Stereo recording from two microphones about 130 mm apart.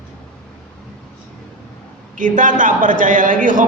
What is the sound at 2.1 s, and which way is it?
A man's voice, 90° right.